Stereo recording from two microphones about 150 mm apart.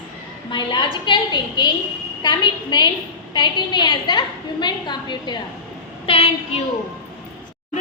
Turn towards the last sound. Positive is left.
turn(degrees=40)  # may be behind; listen again after turning